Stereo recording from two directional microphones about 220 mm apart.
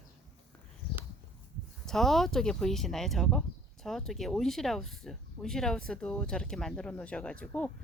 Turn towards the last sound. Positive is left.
turn(degrees=5)  # may be behind; listen again after turning